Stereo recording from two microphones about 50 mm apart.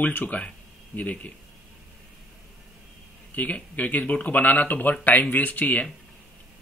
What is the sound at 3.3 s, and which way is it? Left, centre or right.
Speech, left.